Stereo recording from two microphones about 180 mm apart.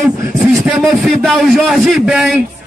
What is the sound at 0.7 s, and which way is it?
A man's voice, centre (ahead or behind).